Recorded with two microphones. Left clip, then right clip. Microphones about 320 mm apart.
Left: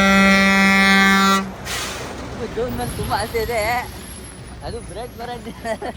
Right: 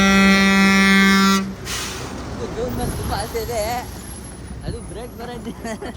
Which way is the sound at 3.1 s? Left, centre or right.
Centre.